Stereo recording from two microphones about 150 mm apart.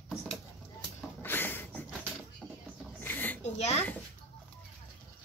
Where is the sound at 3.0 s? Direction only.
10° left (ahead or behind).